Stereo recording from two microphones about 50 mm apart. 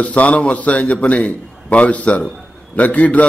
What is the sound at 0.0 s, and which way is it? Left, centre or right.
A man's voice, left.